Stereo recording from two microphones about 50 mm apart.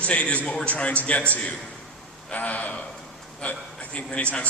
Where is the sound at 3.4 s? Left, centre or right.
Left.